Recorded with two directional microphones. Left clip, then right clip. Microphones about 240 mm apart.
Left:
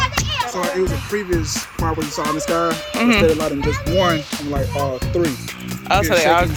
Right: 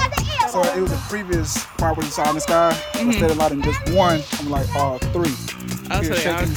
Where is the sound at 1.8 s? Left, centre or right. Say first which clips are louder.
Right 2 dB; centre.